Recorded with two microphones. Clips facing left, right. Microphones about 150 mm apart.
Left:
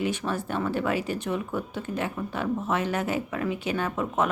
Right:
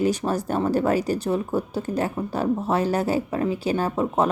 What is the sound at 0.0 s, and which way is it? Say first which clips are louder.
A woman's voice: right 6 dB; 40° right (ahead or behind).